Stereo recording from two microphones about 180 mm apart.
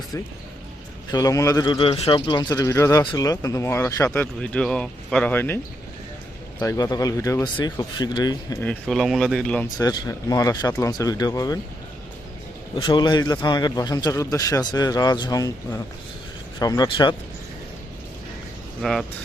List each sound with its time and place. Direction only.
1.1 s a man's voice: 20° left (ahead or behind)
1.7 s a man's voice: 30° left (ahead or behind); by 5.5 s 10° left (ahead or behind)
6.6 s a man's voice: 20° left (ahead or behind)
8.6 s speech: 5° left (ahead or behind)
9.6 s a man's voice: 20° left (ahead or behind)
12.8 s a man's voice: 25° left (ahead or behind)
18.8 s speech: centre (ahead or behind)